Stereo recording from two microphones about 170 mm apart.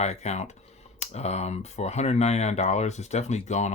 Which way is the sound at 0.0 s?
40° left (ahead or behind).